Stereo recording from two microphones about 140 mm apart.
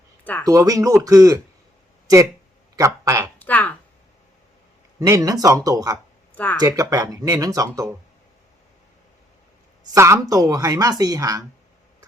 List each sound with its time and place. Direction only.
0.4 s speech: 25° right (ahead or behind)
2.7 s speech: 25° right (ahead or behind)
3.3 s a sound: 10° left (ahead or behind)
4.9 s speech: 25° right (ahead or behind)
6.3 s speech: 10° left (ahead or behind)
6.6 s speech: 25° right (ahead or behind)
9.9 s speech: 20° right (ahead or behind)